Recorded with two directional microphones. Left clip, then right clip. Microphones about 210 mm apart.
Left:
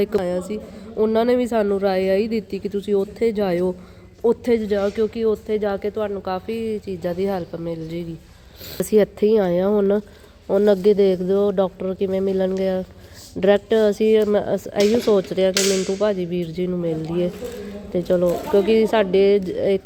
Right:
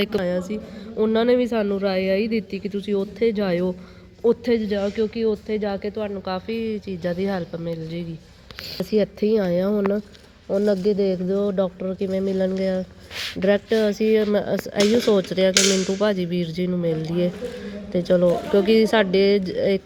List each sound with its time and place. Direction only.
0.2 s speech: centre (ahead or behind)
10.5 s speech: 25° left (ahead or behind); by 19.8 s 10° left (ahead or behind)